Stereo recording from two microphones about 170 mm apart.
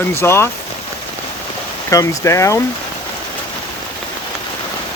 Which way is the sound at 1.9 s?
20° left (ahead or behind).